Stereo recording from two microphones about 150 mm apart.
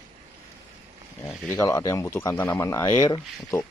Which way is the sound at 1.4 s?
20° left (ahead or behind).